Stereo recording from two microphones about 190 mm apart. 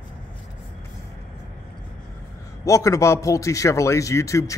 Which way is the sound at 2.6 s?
15° left (ahead or behind).